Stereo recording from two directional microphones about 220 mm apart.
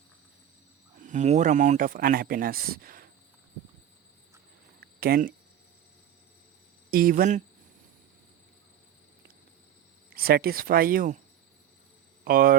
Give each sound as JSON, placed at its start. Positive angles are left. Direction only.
{"t": 1.0, "sound": "speech", "side_deg": -35}
{"t": 4.8, "sound": "a sound", "side_deg": -40}
{"t": 6.9, "sound": "speech", "side_deg": -40}
{"t": 10.2, "sound": "speech", "side_deg": -45}
{"t": 12.2, "sound": "speech", "side_deg": -40}